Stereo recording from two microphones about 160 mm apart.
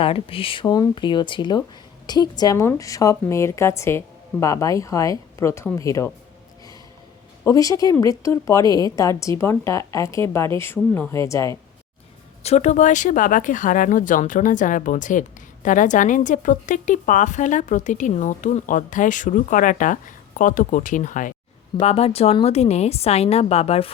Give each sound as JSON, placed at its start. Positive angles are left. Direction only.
{"t": 0.0, "sound": "a woman's voice", "side_deg": 35}
{"t": 7.4, "sound": "a woman's voice", "side_deg": 20}
{"t": 12.4, "sound": "speech", "side_deg": 45}
{"t": 21.8, "sound": "a woman's voice", "side_deg": 40}